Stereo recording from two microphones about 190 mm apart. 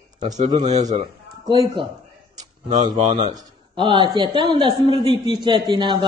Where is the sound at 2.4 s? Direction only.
20° right (ahead or behind).